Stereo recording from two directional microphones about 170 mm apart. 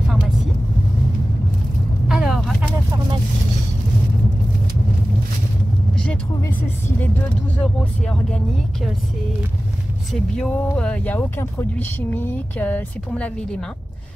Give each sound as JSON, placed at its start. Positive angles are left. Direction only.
{"t": 2.0, "sound": "vehicle", "side_deg": 0}
{"t": 7.5, "sound": "speech", "side_deg": 5}
{"t": 10.1, "sound": "speech", "side_deg": 5}